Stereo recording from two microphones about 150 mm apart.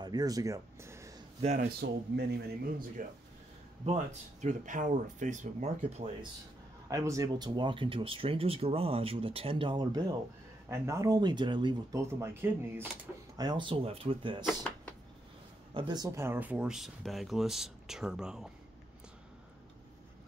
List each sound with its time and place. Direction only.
0.0 s a sound: 25° right (ahead or behind)
1.4 s speech: 50° right (ahead or behind)
1.8 s speech: 90° right
3.0 s speech: 65° right (ahead or behind)
3.8 s speech: 45° right (ahead or behind)
6.9 s speech: 20° right (ahead or behind)
10.7 s speech: 20° right (ahead or behind)
12.0 s speech: 15° right (ahead or behind)
13.4 s speech: 30° right (ahead or behind)
14.4 s speech: 10° left (ahead or behind)
15.7 s speech: 25° right (ahead or behind); by 18.5 s 5° right (ahead or behind)